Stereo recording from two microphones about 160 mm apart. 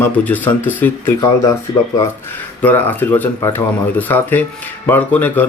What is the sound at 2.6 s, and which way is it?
Speech, 10° left (ahead or behind).